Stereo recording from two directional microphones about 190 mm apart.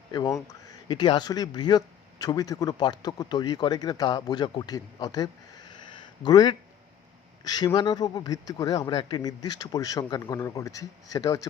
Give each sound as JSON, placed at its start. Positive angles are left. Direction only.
{"t": 0.1, "sound": "speech", "side_deg": 20}